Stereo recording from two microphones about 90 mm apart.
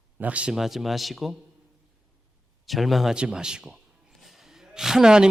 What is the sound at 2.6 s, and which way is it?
A man's voice, centre (ahead or behind).